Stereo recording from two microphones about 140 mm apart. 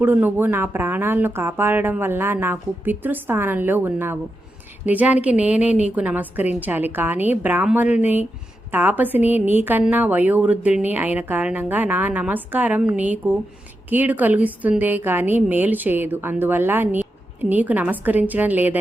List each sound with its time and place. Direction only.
0.0 s a woman's voice: 15° right (ahead or behind)